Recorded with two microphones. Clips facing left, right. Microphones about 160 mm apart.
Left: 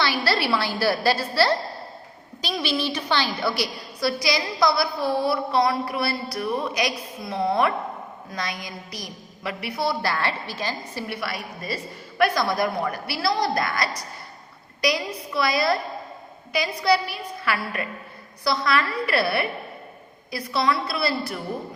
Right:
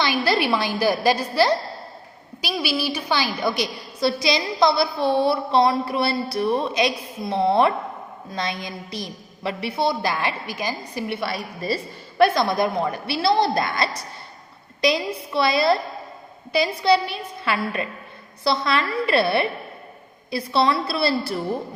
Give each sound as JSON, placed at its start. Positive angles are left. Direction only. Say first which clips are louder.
{"t": 0.0, "sound": "a woman's voice", "louder": "right 3 dB", "side_deg": -20}